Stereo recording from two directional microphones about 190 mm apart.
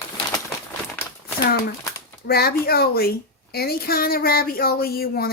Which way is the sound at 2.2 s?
55° left (ahead or behind).